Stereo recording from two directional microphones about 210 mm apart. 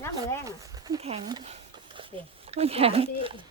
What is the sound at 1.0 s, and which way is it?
Speech, 25° right (ahead or behind).